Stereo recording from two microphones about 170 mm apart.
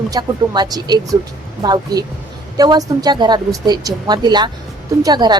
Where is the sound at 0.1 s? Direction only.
25° right (ahead or behind).